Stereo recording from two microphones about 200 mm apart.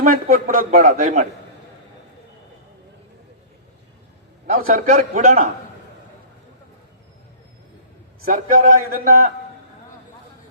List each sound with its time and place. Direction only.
0.0 s a man's voice: 45° right (ahead or behind)
4.6 s a man's voice: 40° right (ahead or behind)
8.3 s a man's voice: 45° right (ahead or behind)